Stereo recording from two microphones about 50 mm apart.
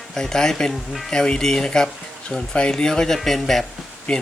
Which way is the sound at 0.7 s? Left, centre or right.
Centre.